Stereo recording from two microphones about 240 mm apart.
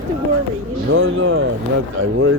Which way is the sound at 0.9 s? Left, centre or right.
Right.